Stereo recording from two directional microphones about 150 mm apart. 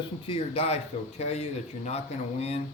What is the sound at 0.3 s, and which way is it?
Speech, 40° left (ahead or behind).